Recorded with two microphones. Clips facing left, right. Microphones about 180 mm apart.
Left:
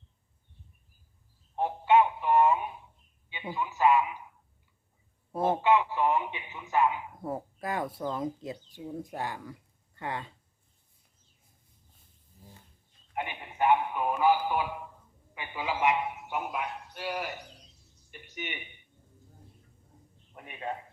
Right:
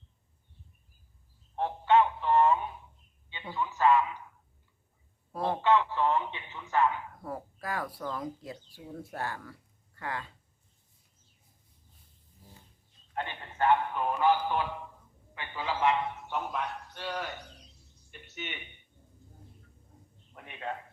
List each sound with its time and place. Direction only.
1.5 s telephone: 15° left (ahead or behind)
3.2 s a sound: 15° left (ahead or behind)
5.3 s a man's voice: 20° left (ahead or behind)
13.1 s a man's voice: 15° left (ahead or behind)
18.1 s a sound: 10° left (ahead or behind)
20.3 s a man's voice: 10° left (ahead or behind)